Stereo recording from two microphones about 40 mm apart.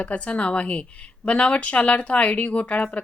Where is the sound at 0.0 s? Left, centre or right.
Left.